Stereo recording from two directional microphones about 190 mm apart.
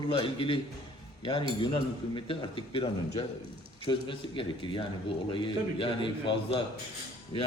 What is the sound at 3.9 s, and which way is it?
A man's voice, 25° left (ahead or behind).